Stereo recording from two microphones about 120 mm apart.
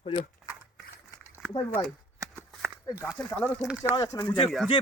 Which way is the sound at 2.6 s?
10° right (ahead or behind).